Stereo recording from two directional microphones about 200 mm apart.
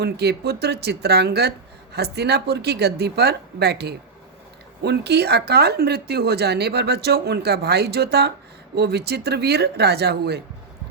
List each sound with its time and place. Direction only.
0.0 s speech: 55° right (ahead or behind)